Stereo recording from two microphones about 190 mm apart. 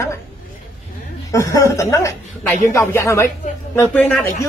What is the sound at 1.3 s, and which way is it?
A woman's voice, 15° left (ahead or behind).